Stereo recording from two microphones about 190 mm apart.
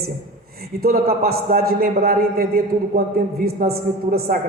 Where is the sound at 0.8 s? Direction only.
55° right (ahead or behind).